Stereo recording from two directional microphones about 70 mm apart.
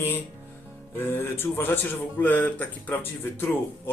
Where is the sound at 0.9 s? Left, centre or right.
Left.